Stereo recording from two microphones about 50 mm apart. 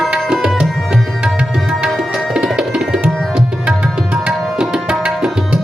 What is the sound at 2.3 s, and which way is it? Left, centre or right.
Music, centre.